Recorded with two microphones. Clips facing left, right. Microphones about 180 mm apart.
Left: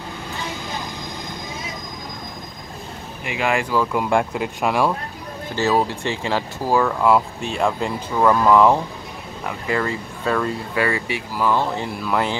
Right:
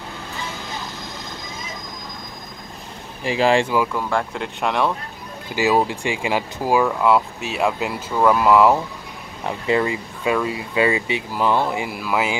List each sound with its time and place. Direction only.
3.3 s speech: 30° right (ahead or behind)
3.9 s speech: 15° left (ahead or behind)
5.6 s speech: 15° right (ahead or behind)
9.5 s speech: 20° right (ahead or behind)
10.8 s speech: 20° right (ahead or behind)